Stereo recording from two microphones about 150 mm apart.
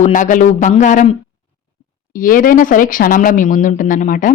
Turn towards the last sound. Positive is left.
turn(degrees=60)  # may be behind; listen again after turning